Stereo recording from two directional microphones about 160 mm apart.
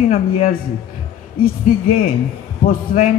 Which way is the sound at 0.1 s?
60° left (ahead or behind).